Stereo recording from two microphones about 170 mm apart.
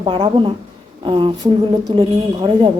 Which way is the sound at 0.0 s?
25° right (ahead or behind).